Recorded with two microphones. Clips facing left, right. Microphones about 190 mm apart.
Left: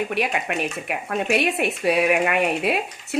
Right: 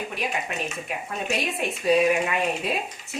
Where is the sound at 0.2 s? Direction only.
70° left (ahead or behind).